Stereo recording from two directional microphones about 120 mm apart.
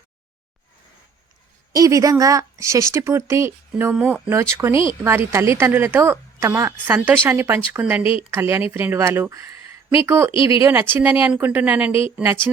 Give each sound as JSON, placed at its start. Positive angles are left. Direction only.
{"t": 1.7, "sound": "speech", "side_deg": -30}
{"t": 3.9, "sound": "speech", "side_deg": -10}
{"t": 4.4, "sound": "speech", "side_deg": -20}
{"t": 11.9, "sound": "speech", "side_deg": 50}
{"t": 12.1, "sound": "speech", "side_deg": -15}